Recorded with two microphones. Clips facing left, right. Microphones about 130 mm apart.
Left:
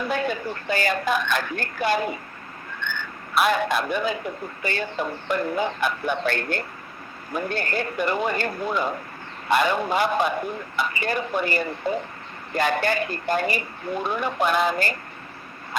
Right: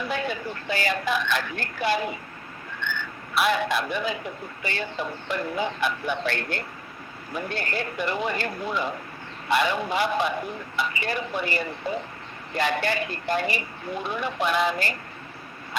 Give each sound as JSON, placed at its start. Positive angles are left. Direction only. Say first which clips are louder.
{"t": 0.0, "sound": "speech", "louder": "left 3 dB", "side_deg": 45}